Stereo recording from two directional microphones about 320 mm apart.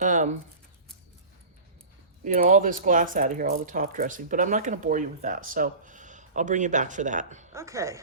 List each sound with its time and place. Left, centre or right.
0.0 s speech: right
2.2 s speech: right
7.5 s speech: centre